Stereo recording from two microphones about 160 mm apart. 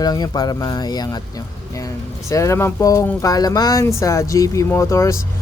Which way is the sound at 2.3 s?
20° left (ahead or behind).